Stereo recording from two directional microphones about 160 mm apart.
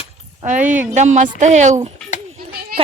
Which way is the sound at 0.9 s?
50° right (ahead or behind).